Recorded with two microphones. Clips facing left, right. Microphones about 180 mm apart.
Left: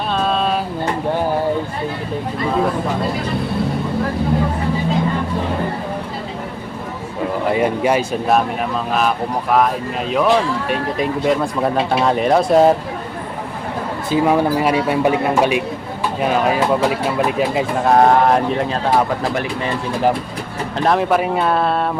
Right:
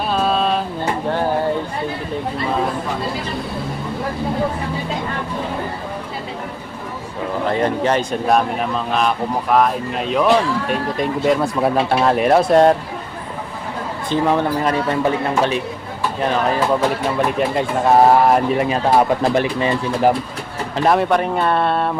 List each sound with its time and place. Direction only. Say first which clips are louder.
0.1 s a sound: even; 5° right (ahead or behind)
7.5 s speech: left 1 dB; 10° left (ahead or behind)
14.1 s speech: left 2 dB; 10° left (ahead or behind); by 19.0 s 10° right (ahead or behind)
19.3 s speech: right 4 dB; 25° right (ahead or behind)
20.7 s speech: even; centre (ahead or behind)